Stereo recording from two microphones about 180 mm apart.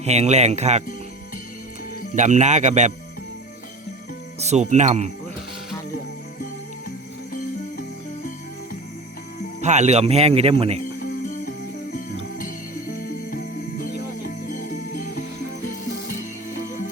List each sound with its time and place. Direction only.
0.0 s speech: 35° right (ahead or behind)
2.1 s speech: 40° right (ahead or behind)
4.4 s speech: 40° right (ahead or behind)
7.3 s music: 50° left (ahead or behind)
9.6 s speech: 40° right (ahead or behind)
11.0 s music: 50° left (ahead or behind)
13.3 s music: 50° left (ahead or behind)
16.1 s music: 45° left (ahead or behind)